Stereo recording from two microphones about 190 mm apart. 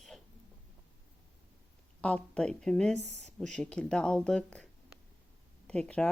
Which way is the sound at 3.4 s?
5° left (ahead or behind).